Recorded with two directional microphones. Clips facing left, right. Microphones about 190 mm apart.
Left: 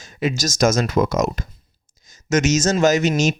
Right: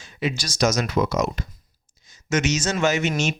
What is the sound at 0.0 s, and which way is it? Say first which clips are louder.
Speech: left 5 dB; 45° left (ahead or behind).